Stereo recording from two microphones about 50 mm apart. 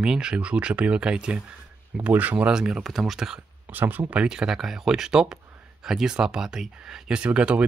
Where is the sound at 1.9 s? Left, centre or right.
Right.